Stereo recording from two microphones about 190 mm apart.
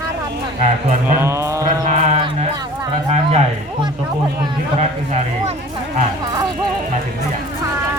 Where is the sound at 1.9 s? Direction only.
35° right (ahead or behind).